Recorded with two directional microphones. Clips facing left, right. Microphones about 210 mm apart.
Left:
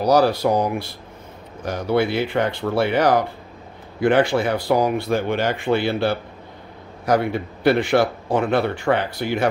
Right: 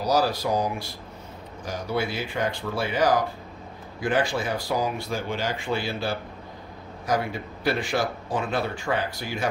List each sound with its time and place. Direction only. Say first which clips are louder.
0.0 s speech: left 7 dB; 60° left (ahead or behind)